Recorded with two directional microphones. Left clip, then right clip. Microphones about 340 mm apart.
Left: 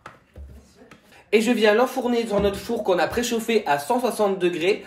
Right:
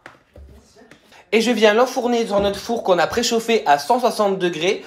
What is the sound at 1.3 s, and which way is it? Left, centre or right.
Speech, centre.